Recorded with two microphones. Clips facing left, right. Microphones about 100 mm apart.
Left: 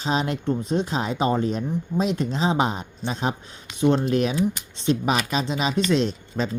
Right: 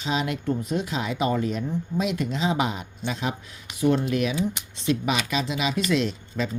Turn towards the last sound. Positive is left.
turn(degrees=35)  # may be behind; listen again after turning